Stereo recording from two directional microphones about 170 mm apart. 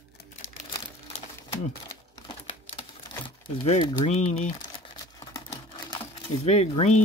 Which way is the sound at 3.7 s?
35° left (ahead or behind).